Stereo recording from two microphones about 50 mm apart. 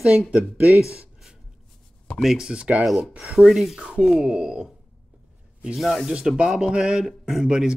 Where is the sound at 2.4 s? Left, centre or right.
Centre.